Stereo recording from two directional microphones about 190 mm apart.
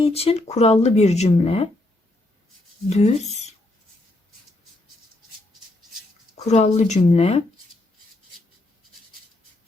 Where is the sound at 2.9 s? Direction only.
35° left (ahead or behind).